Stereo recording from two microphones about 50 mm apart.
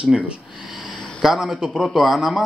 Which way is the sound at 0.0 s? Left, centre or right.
Centre.